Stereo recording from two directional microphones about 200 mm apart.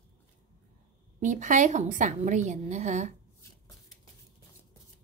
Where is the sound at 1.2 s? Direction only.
40° right (ahead or behind).